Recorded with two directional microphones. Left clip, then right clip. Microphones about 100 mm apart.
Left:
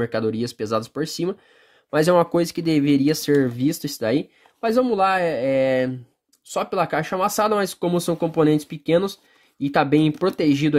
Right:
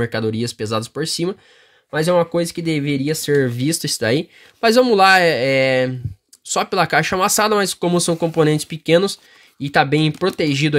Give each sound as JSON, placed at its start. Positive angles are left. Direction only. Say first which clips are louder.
{"t": 0.0, "sound": "speech", "louder": "right 2 dB", "side_deg": -10}
{"t": 1.9, "sound": "speech", "louder": "even", "side_deg": 10}
{"t": 3.3, "sound": "speech", "louder": "right 2 dB", "side_deg": -15}
{"t": 4.6, "sound": "speech", "louder": "right 6 dB", "side_deg": -50}
{"t": 7.2, "sound": "speech", "louder": "right 4 dB", "side_deg": -20}
{"t": 9.7, "sound": "speech", "louder": "right 2 dB", "side_deg": -10}